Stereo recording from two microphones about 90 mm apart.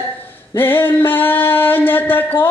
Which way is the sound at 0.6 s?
25° left (ahead or behind).